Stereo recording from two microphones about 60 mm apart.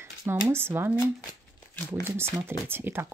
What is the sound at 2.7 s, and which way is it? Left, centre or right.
Speech, right.